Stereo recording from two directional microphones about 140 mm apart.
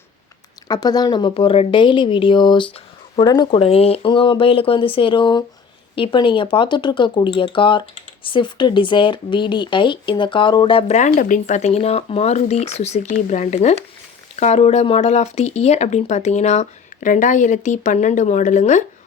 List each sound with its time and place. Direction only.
0.7 s speech: 30° left (ahead or behind)
10.9 s speech: 55° left (ahead or behind)